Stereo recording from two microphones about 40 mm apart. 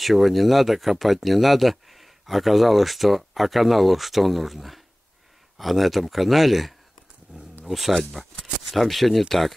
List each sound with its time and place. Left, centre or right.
0.0 s speech: centre
7.3 s a sound: right
7.6 s speech: centre
7.9 s speech: centre